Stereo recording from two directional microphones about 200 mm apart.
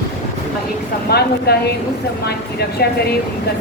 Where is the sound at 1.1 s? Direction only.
55° left (ahead or behind).